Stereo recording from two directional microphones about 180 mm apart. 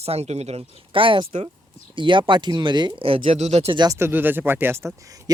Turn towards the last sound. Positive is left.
turn(degrees=-15)  # may be behind; listen again after turning